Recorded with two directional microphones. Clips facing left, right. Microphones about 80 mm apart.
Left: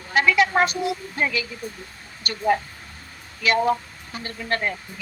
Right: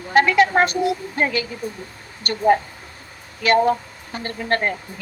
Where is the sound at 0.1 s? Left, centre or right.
Right.